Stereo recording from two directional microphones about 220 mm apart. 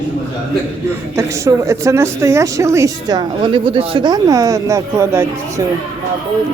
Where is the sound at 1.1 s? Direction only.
15° right (ahead or behind).